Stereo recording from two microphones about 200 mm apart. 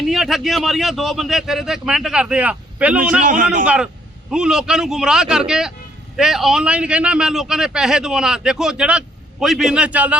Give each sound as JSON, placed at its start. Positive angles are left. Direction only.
{"t": 0.0, "sound": "a man's voice", "side_deg": 0}
{"t": 3.2, "sound": "a man's voice", "side_deg": -40}
{"t": 4.3, "sound": "a man's voice", "side_deg": -5}